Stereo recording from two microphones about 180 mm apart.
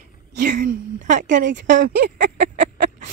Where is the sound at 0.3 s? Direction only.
50° right (ahead or behind).